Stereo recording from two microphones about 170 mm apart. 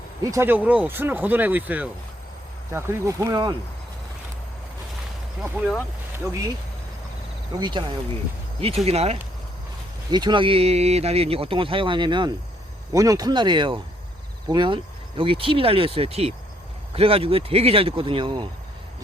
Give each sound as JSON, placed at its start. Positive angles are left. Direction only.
{"t": 0.3, "sound": "speech", "side_deg": -15}
{"t": 5.4, "sound": "speech", "side_deg": -5}
{"t": 7.6, "sound": "speech", "side_deg": -25}
{"t": 10.1, "sound": "speech", "side_deg": -25}